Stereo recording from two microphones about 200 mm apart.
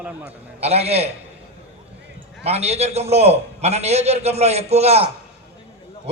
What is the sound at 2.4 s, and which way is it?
A man's voice, 30° right (ahead or behind).